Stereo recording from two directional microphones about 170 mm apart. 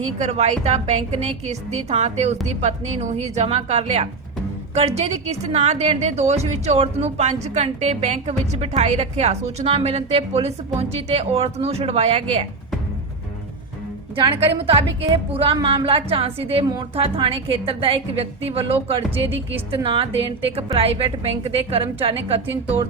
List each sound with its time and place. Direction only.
0.2 s a woman's voice: 40° right (ahead or behind)
14.2 s a woman's voice: 30° right (ahead or behind)